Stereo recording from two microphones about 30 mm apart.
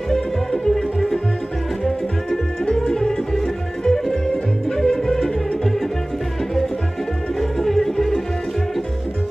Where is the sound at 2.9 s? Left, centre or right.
Left.